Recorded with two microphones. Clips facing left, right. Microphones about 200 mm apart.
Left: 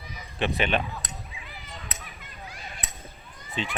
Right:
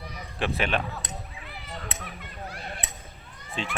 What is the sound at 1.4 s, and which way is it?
Cat, 55° right (ahead or behind).